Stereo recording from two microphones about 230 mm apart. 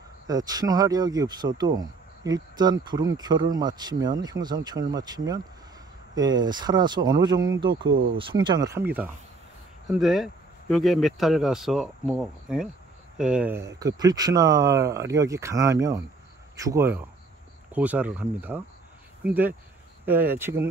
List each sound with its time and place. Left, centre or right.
0.3 s speech: centre